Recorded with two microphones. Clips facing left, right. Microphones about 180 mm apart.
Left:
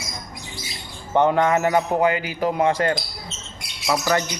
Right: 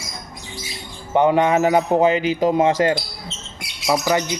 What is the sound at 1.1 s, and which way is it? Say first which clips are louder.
A man's voice: right 2 dB; 15° right (ahead or behind).